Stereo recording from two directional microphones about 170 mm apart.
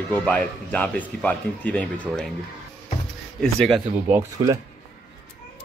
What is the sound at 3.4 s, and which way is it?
Speech, 5° left (ahead or behind).